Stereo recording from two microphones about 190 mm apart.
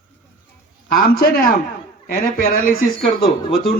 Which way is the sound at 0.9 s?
50° left (ahead or behind).